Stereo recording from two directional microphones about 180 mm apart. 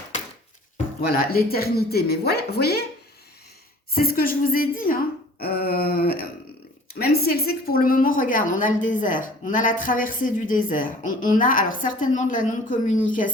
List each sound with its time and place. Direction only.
1.0 s speech: 55° left (ahead or behind)
3.9 s a woman's voice: 55° left (ahead or behind)